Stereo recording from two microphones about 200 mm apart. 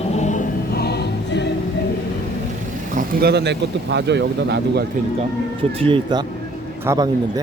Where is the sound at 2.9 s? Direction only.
50° right (ahead or behind).